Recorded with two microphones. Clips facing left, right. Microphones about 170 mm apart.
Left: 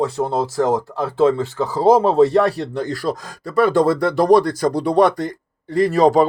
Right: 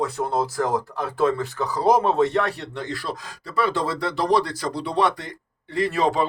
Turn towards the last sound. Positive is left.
turn(degrees=40)  # may be behind; listen again after turning